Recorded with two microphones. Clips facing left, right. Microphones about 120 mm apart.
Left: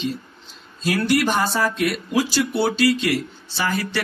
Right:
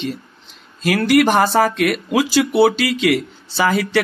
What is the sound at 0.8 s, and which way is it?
Speech, 75° right (ahead or behind).